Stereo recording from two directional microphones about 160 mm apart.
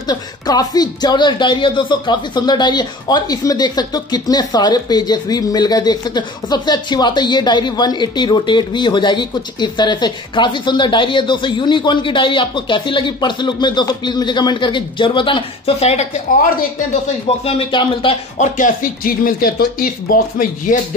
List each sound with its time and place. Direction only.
0.0 s speech: 25° left (ahead or behind); by 16.1 s 40° left (ahead or behind)
17.5 s speech: 30° left (ahead or behind)
18.4 s speech: 55° left (ahead or behind)